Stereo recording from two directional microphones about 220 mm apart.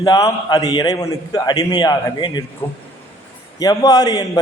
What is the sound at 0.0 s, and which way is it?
A man's voice, 15° left (ahead or behind).